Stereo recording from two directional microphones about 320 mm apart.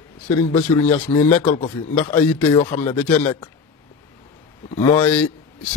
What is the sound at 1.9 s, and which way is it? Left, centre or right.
A man's voice, centre.